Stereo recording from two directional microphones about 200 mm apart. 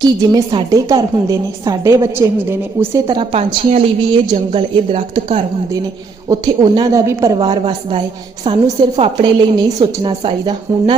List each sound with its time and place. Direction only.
0.0 s a woman's voice: 20° right (ahead or behind)
7.3 s a woman's voice: 25° right (ahead or behind)